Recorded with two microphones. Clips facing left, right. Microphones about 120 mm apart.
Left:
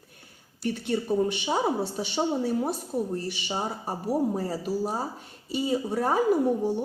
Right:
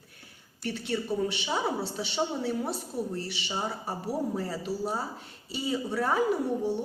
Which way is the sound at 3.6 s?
35° left (ahead or behind).